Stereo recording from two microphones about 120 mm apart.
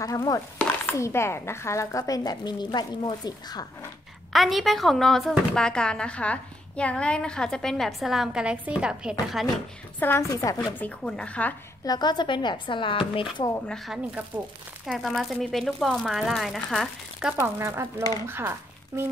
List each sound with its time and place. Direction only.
0.0 s a woman's voice: 30° left (ahead or behind)
4.3 s speech: centre (ahead or behind)
9.9 s speech: 20° left (ahead or behind)
10.3 s speech: 30° left (ahead or behind)
10.6 s speech: 15° left (ahead or behind)
11.8 s speech: 35° left (ahead or behind)
13.7 s speech: centre (ahead or behind)
17.3 s speech: 20° right (ahead or behind)